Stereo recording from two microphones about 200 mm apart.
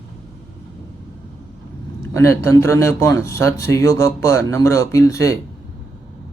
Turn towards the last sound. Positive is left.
turn(degrees=15)  # may be behind; listen again after turning